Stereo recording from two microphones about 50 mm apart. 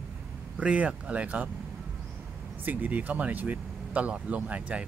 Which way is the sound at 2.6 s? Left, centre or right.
Right.